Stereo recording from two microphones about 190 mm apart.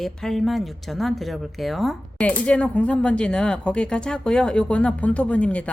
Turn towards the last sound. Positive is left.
turn(degrees=5)  # may be behind; listen again after turning